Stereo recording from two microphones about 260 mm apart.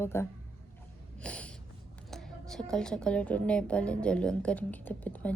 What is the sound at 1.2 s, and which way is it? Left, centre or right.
Snort, centre.